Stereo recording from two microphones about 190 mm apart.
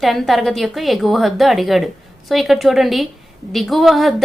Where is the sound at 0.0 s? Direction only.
Centre (ahead or behind).